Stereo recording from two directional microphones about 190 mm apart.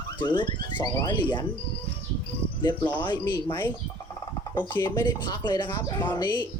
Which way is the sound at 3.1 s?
25° left (ahead or behind).